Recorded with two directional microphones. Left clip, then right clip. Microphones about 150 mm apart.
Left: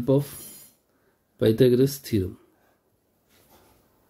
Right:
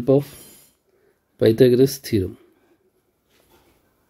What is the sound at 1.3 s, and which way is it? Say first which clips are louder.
Speech: right 5 dB; 15° right (ahead or behind).